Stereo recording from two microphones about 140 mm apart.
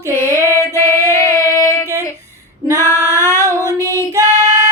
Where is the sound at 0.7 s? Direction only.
20° left (ahead or behind).